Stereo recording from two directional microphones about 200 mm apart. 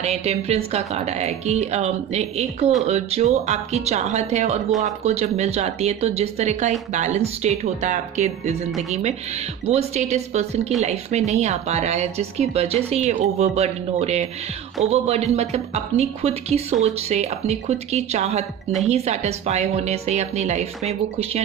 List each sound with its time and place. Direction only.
0.0 s speech: 30° right (ahead or behind)